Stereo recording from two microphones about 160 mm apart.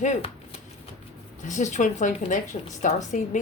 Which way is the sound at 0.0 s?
45° left (ahead or behind).